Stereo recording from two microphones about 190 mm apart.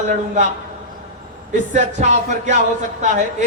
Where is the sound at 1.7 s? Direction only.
40° right (ahead or behind).